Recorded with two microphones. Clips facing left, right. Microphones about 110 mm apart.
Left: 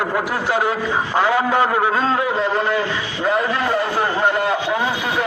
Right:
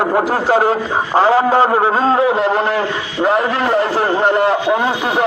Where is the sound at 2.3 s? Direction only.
65° right (ahead or behind).